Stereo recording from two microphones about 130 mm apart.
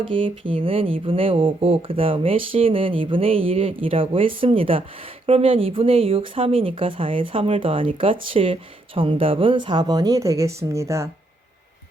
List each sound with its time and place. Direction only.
0.0 s speech: 40° right (ahead or behind); by 11.1 s 20° right (ahead or behind)